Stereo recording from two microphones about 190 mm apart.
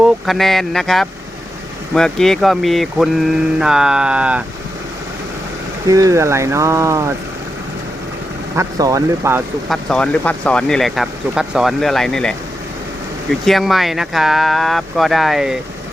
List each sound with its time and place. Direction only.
0.0 s speech: centre (ahead or behind)
5.9 s speech: 15° right (ahead or behind)
8.5 s speech: 20° right (ahead or behind)
9.6 s speech: 5° left (ahead or behind)
13.4 s speech: centre (ahead or behind)